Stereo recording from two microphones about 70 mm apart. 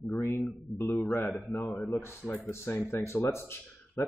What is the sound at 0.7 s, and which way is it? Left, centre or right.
Speech, centre.